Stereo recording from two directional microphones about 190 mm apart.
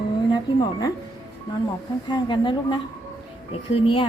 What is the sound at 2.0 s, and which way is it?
Speech, 25° left (ahead or behind).